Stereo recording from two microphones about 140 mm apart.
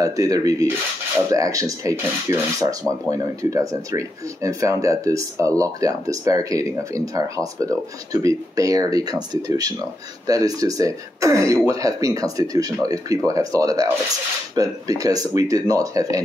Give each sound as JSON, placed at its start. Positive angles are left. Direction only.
{"t": 0.0, "sound": "speech", "side_deg": -25}